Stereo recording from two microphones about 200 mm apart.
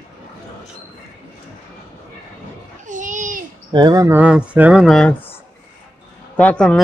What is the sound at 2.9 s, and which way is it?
Babbling, 40° right (ahead or behind).